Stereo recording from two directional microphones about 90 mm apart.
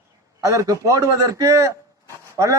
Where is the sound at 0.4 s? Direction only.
35° right (ahead or behind).